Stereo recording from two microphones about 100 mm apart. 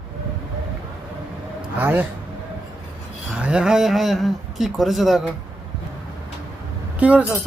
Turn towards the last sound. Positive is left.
turn(degrees=-10)  # may be behind; listen again after turning